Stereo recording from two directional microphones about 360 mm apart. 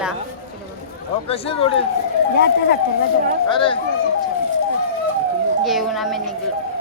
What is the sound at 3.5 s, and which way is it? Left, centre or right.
Speech, centre.